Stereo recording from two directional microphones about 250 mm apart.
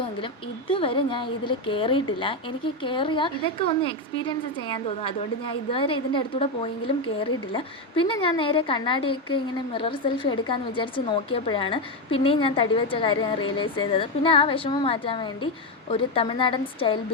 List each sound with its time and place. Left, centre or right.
0.7 s a woman's voice: left